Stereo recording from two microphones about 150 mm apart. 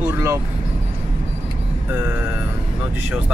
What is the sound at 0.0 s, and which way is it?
Vehicle, 20° right (ahead or behind).